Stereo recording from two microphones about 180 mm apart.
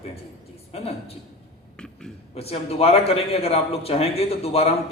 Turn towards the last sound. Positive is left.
turn(degrees=35)  # may be behind; listen again after turning